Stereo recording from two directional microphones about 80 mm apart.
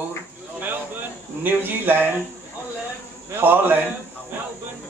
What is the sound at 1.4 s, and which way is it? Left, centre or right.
Speech, right.